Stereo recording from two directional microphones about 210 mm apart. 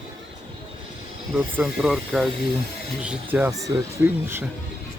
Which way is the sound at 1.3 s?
5° right (ahead or behind).